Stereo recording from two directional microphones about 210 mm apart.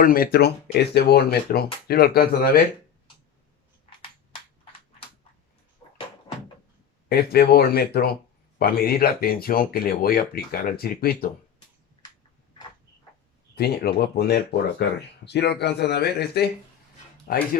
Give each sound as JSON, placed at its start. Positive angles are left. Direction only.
{"t": 0.0, "sound": "speech", "side_deg": 45}
{"t": 3.8, "sound": "a sound", "side_deg": 25}
{"t": 7.1, "sound": "speech", "side_deg": 45}
{"t": 13.6, "sound": "speech", "side_deg": 50}